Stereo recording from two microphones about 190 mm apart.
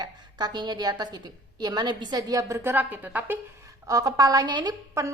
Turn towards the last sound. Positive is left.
turn(degrees=-20)  # may be behind; listen again after turning